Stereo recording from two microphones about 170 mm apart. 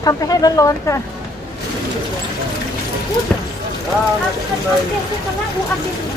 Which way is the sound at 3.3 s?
10° left (ahead or behind).